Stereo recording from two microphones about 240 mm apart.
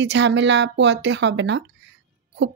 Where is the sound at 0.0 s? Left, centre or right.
Right.